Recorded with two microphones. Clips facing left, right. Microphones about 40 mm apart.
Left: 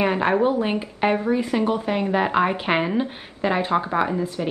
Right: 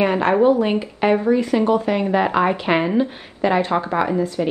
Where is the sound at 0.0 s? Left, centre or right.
Centre.